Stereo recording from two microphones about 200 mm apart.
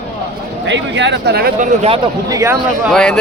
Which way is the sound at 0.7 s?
60° right (ahead or behind).